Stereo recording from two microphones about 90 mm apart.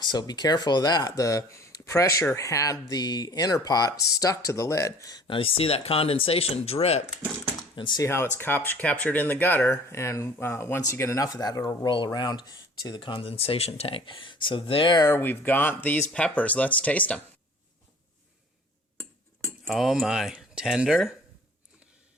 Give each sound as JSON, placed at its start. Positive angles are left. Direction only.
{"t": 0.0, "sound": "speech", "side_deg": 55}
{"t": 5.3, "sound": "speech", "side_deg": 90}
{"t": 8.0, "sound": "speech", "side_deg": 30}
{"t": 9.6, "sound": "speech", "side_deg": 30}
{"t": 15.1, "sound": "speech", "side_deg": 25}
{"t": 19.6, "sound": "speech", "side_deg": 0}